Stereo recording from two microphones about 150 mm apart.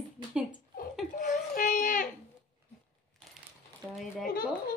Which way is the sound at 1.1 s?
65° left (ahead or behind).